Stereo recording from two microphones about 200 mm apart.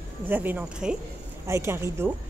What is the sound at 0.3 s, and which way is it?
Speech, 10° right (ahead or behind).